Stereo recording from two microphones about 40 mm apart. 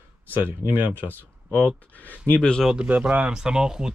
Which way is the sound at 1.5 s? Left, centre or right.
Left.